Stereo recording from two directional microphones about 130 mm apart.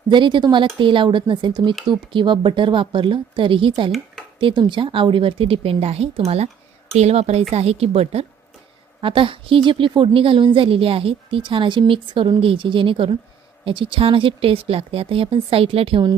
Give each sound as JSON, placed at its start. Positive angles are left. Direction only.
{"t": 0.1, "sound": "a woman's voice", "side_deg": -35}